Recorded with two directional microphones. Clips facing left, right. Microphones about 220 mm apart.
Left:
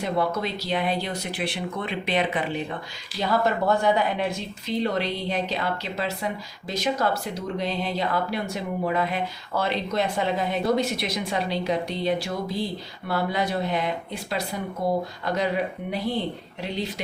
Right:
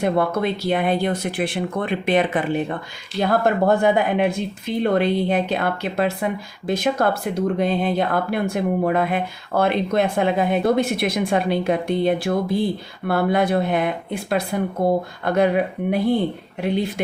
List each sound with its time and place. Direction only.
0.0 s speech: 55° right (ahead or behind)